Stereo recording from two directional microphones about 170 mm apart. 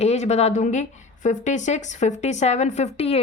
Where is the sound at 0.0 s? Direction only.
40° left (ahead or behind).